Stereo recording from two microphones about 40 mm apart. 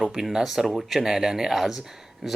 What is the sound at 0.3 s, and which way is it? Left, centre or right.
Speech, centre.